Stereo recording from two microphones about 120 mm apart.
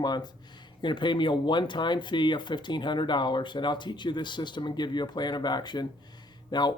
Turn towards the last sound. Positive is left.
turn(degrees=35)  # may be behind; listen again after turning